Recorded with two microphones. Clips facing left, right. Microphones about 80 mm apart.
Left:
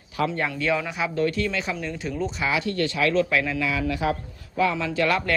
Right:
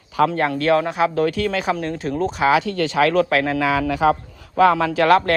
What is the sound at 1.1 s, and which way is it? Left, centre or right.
Speech, right.